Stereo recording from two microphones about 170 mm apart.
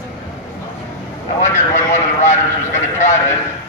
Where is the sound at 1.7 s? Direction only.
45° left (ahead or behind).